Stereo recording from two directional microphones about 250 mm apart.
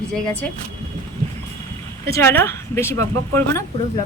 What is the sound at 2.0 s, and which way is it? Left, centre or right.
Speech, centre.